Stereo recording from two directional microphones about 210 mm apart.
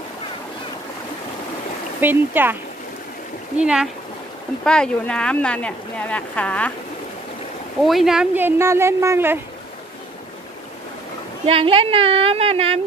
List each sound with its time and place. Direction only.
2.0 s speech: 10° right (ahead or behind)
3.5 s speech: 5° right (ahead or behind)
7.8 s speech: centre (ahead or behind)
11.4 s speech: 25° right (ahead or behind)